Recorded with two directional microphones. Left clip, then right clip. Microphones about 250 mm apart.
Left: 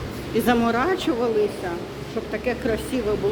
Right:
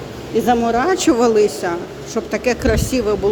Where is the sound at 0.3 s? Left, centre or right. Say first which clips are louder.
Right 5 dB; centre.